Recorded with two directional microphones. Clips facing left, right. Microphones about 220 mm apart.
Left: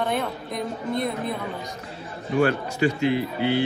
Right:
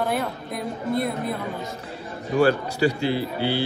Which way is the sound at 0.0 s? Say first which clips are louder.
Right 1 dB; centre (ahead or behind).